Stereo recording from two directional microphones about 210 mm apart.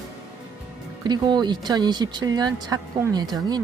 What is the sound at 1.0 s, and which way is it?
Speech, 20° right (ahead or behind).